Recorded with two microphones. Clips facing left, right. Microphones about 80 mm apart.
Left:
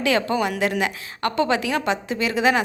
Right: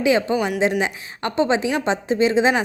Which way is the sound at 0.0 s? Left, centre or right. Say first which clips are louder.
Right 2 dB; centre.